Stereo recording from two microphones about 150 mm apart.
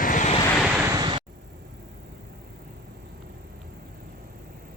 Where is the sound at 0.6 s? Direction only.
10° right (ahead or behind).